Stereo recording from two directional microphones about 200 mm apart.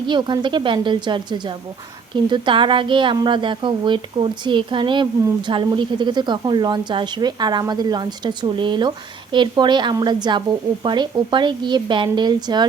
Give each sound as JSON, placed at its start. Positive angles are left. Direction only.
{"t": 0.1, "sound": "a woman's voice", "side_deg": -25}